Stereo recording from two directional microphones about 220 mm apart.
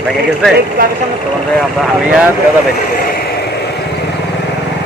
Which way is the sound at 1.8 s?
5° right (ahead or behind).